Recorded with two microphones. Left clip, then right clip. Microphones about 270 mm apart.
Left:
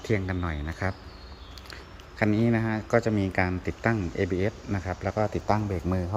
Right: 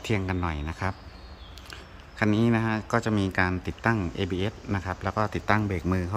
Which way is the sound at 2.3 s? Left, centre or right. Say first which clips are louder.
Right 1 dB; centre.